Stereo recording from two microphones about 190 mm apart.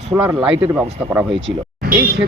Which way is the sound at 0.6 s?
10° right (ahead or behind).